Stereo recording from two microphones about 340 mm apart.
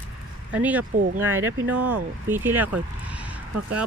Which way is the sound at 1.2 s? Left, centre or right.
Centre.